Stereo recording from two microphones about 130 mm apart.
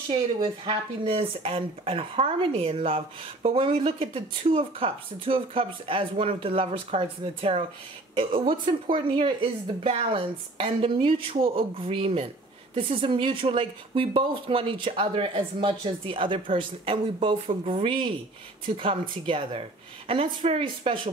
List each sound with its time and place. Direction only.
0.1 s speech: 45° right (ahead or behind)